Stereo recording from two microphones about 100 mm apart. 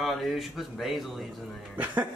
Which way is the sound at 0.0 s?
Centre (ahead or behind).